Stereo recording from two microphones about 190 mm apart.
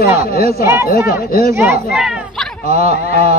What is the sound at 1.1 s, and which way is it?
Speech, 55° left (ahead or behind).